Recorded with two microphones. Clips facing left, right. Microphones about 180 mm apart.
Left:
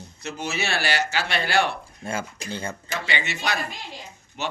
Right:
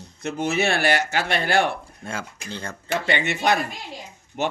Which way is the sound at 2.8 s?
55° right (ahead or behind).